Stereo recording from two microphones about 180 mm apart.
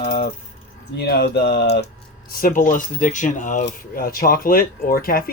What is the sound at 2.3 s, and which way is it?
Speech, 50° left (ahead or behind).